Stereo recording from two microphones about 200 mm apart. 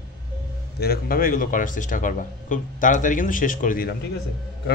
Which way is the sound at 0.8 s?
50° left (ahead or behind).